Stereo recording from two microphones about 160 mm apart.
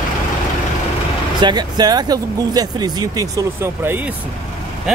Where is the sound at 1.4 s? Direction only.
25° right (ahead or behind).